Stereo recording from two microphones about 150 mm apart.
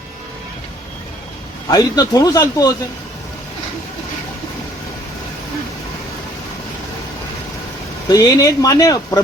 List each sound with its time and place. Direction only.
1.7 s speech: 25° left (ahead or behind)
8.0 s speech: 25° left (ahead or behind)